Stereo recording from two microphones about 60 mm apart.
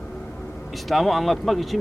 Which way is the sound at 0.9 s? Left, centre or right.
Centre.